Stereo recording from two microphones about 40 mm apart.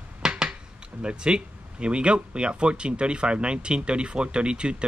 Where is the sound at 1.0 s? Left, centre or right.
Right.